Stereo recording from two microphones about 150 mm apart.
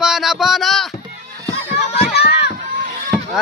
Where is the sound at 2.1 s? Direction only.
90° left.